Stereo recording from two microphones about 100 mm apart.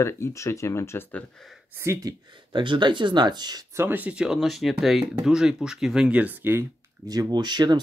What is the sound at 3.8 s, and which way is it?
Speech, 20° right (ahead or behind).